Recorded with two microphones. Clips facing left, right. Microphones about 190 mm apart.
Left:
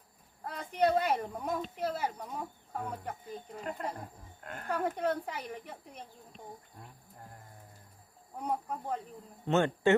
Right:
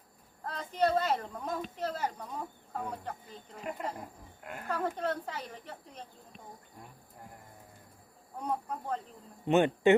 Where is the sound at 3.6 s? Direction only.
10° right (ahead or behind).